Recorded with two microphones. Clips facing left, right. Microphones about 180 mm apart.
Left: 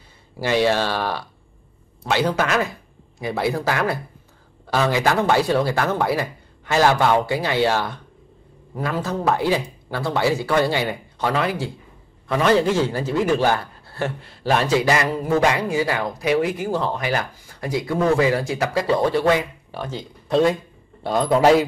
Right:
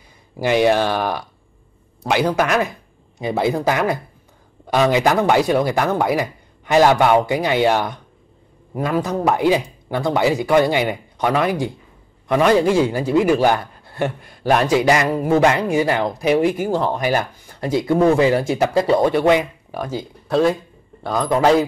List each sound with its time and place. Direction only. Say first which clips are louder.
0.4 s a man's voice: right 3 dB; 15° right (ahead or behind)
16.9 s speech: right 4 dB; 30° right (ahead or behind); by 20.5 s centre (ahead or behind)